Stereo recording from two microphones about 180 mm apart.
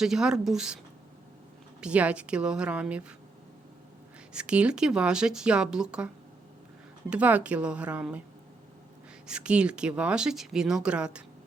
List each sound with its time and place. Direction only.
0.0 s speech: 5° right (ahead or behind)
1.8 s speech: 5° right (ahead or behind)
4.3 s speech: 5° right (ahead or behind)
7.1 s speech: 10° right (ahead or behind)
9.2 s speech: 5° right (ahead or behind)